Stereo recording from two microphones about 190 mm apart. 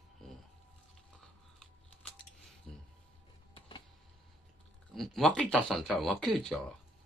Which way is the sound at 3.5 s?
25° left (ahead or behind).